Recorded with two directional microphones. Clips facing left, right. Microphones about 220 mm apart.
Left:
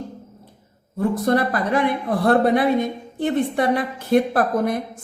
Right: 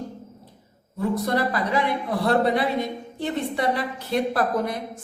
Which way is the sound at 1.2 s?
50° left (ahead or behind).